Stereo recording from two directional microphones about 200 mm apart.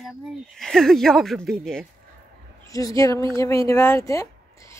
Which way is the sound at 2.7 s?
15° left (ahead or behind).